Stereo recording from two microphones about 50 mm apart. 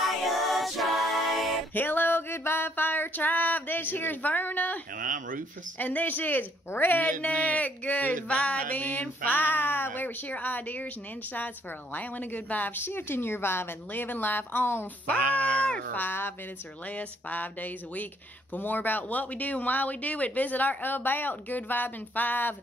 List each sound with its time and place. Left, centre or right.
0.0 s music: centre
1.7 s a sound: left
5.8 s speech: left
7.1 s speech: left
12.8 s a woman's voice: left
15.9 s a woman's voice: left
16.9 s speech: left